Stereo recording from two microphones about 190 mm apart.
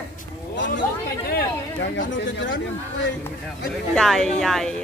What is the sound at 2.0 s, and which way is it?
Speech, 75° left (ahead or behind).